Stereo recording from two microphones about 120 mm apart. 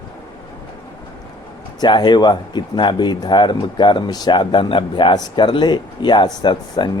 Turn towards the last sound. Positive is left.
turn(degrees=40)  # may be behind; listen again after turning